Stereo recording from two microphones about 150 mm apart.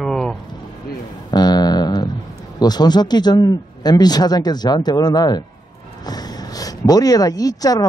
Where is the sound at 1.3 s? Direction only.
25° left (ahead or behind).